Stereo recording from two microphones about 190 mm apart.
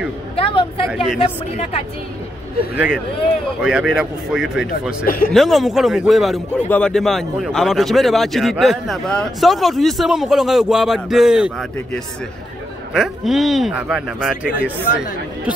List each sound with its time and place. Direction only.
0.4 s a sound: 30° left (ahead or behind)
0.8 s a man's voice: centre (ahead or behind)
2.7 s a man's voice: 10° right (ahead or behind)
5.0 s speech: 50° left (ahead or behind)
5.3 s a man's voice: centre (ahead or behind)